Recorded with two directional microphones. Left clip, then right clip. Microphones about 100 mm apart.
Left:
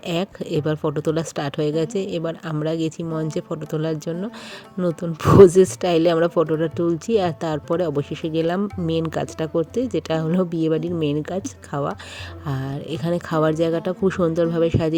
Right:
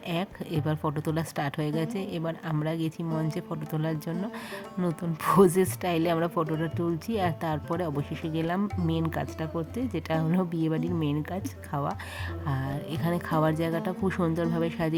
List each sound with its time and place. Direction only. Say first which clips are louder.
0.1 s speech: left 8 dB; 40° left (ahead or behind)
9.9 s speech: left 7 dB; 40° left (ahead or behind)